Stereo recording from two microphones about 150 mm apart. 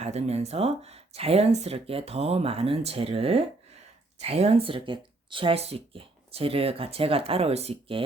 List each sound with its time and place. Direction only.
0.0 s speech: 45° right (ahead or behind)